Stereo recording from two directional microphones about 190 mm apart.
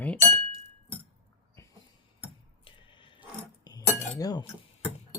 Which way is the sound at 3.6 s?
20° left (ahead or behind).